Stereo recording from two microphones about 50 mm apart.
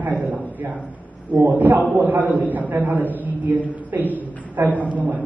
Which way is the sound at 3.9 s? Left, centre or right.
Right.